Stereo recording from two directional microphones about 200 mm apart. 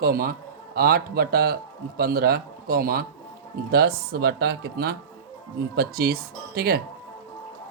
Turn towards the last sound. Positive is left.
turn(degrees=-50)  # may be behind; listen again after turning